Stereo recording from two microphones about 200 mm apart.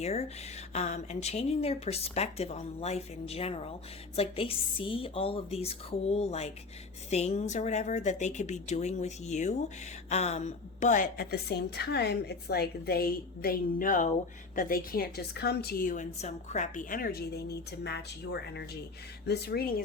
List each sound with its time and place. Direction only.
0.0 s a woman's voice: 30° left (ahead or behind); by 19.6 s 55° left (ahead or behind)